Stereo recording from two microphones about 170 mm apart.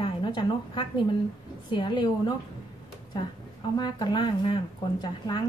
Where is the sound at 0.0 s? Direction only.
30° left (ahead or behind).